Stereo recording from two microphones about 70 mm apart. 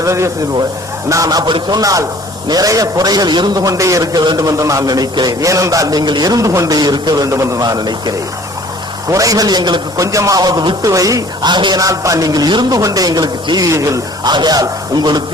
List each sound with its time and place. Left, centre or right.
0.0 s speech: right
1.1 s a man's voice: right
3.6 s speech: right
4.4 s speech: right
5.4 s speech: right
6.7 s a man's voice: right
7.3 s a man's voice: right
9.0 s speech: right
10.0 s speech: right
11.4 s speech: right
11.9 s speech: right
12.8 s speech: right
13.7 s speech: right
14.3 s speech: right